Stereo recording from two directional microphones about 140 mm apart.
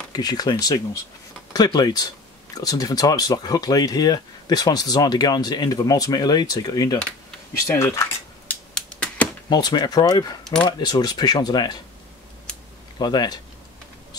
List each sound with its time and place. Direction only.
0.1 s speech: 30° left (ahead or behind)
7.0 s speech: 5° left (ahead or behind)
7.7 s cutlery: 20° left (ahead or behind)
8.7 s a sound: 10° left (ahead or behind)
9.5 s speech: 30° left (ahead or behind)
13.0 s speech: 30° left (ahead or behind)